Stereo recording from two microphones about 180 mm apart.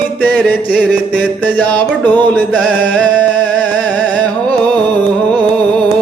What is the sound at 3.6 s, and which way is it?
Music, 5° left (ahead or behind).